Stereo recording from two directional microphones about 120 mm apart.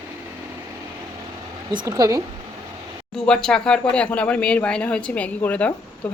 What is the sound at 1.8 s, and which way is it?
Speech, 30° right (ahead or behind).